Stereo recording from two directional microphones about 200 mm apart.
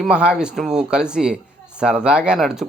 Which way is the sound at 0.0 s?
5° right (ahead or behind).